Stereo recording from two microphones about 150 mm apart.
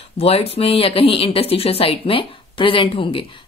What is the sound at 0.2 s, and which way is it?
Speech, 40° left (ahead or behind).